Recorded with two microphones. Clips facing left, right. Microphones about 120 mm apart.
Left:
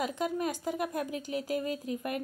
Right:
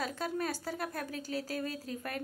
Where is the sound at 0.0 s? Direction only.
15° left (ahead or behind).